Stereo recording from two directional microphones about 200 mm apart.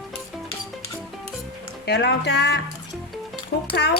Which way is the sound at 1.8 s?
55° left (ahead or behind).